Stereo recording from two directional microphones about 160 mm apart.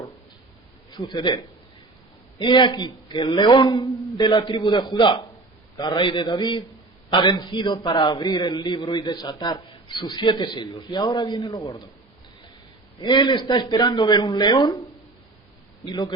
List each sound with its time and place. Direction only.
0.9 s a man's voice: 25° left (ahead or behind)
2.4 s a man's voice: 30° left (ahead or behind)
13.0 s a man's voice: 25° left (ahead or behind)
15.9 s a man's voice: 25° left (ahead or behind)